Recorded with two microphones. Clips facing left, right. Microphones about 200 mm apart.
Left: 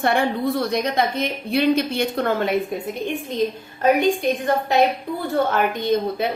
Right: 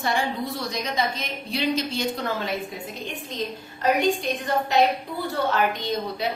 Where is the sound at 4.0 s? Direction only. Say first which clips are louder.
Left 4 dB; 50° left (ahead or behind).